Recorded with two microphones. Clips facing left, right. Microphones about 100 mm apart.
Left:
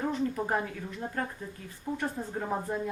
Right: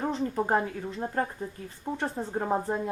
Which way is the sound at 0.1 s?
30° right (ahead or behind).